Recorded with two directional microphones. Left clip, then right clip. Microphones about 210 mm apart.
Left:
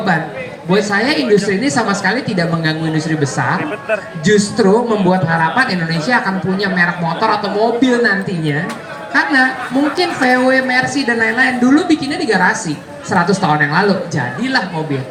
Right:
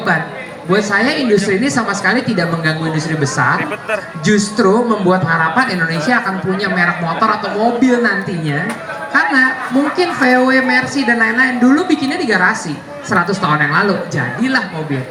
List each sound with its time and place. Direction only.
0.7 s a man's voice: 20° right (ahead or behind)
3.6 s speech: 55° right (ahead or behind)
4.2 s a man's voice: 20° right (ahead or behind)
9.1 s a man's voice: 20° right (ahead or behind)